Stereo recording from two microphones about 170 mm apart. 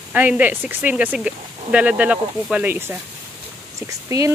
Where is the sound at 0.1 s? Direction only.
10° right (ahead or behind).